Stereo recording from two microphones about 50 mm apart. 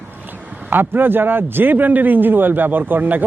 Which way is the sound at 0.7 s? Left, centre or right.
Right.